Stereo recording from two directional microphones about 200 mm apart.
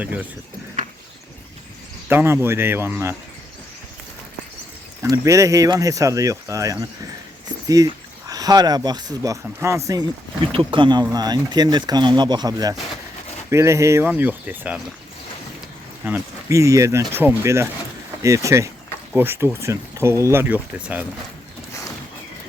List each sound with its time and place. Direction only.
0.0 s speech: 5° right (ahead or behind)
2.0 s speech: 10° right (ahead or behind)
5.1 s speech: 15° right (ahead or behind)
7.4 s a sound: 20° right (ahead or behind)
8.3 s speech: 20° right (ahead or behind)
16.0 s speech: 10° right (ahead or behind)